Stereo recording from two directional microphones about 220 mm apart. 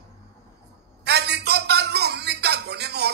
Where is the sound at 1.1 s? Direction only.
50° right (ahead or behind).